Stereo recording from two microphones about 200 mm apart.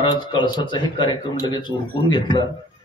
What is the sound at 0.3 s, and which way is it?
Speech, 25° left (ahead or behind).